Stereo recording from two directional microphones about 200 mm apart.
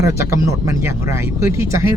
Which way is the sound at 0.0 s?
15° right (ahead or behind).